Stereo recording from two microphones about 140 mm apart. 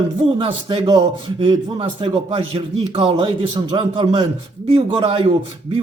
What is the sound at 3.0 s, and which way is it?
A man's voice, 35° right (ahead or behind).